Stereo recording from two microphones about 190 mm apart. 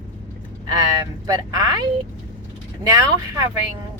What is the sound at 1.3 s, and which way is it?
Speech, 20° right (ahead or behind).